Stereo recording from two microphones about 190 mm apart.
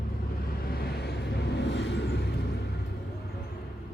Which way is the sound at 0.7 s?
55° left (ahead or behind).